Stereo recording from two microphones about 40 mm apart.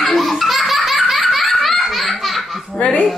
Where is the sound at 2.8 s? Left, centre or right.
Left.